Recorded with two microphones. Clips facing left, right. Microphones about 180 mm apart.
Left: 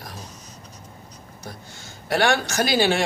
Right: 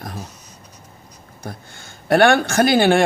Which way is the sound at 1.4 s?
55° right (ahead or behind).